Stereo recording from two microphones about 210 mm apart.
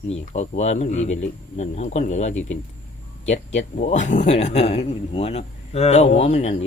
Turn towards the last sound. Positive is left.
turn(degrees=30)  # may be behind; listen again after turning